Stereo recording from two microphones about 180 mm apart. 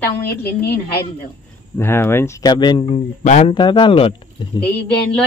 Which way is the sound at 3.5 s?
25° left (ahead or behind).